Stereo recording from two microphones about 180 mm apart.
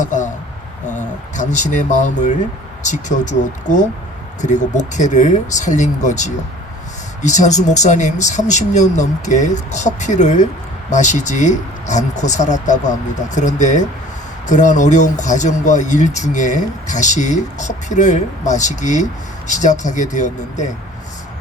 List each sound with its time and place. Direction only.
0.0 s speech: 45° left (ahead or behind)